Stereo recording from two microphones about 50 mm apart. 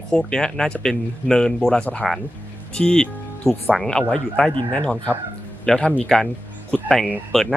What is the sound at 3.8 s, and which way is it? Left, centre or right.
Speech, centre.